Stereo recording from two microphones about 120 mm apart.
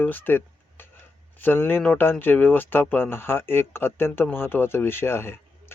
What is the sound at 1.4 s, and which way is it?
Speech, 15° left (ahead or behind).